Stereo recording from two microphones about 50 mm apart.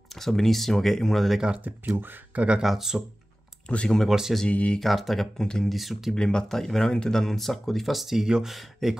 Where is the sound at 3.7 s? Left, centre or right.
Left.